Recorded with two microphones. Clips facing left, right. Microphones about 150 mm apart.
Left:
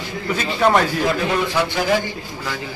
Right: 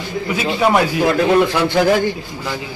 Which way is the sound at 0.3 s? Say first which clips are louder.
Right 1 dB; 5° right (ahead or behind).